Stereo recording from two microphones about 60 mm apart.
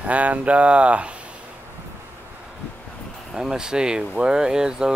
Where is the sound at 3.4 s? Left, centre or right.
Centre.